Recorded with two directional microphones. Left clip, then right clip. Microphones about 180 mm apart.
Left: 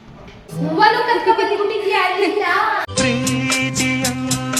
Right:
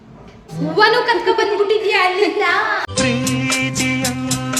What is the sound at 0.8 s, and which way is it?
Speech, 45° right (ahead or behind).